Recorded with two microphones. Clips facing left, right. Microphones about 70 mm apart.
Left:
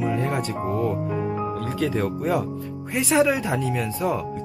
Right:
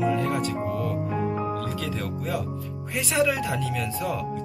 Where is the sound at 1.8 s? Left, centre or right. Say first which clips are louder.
Left 7 dB; left.